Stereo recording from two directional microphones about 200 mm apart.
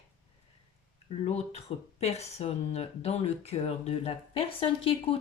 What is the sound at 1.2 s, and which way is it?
Speech, 30° left (ahead or behind).